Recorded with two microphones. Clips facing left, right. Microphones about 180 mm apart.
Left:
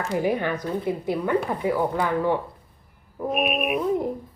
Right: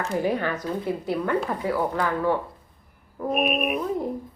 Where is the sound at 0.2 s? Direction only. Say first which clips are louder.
Left 1 dB; 15° left (ahead or behind).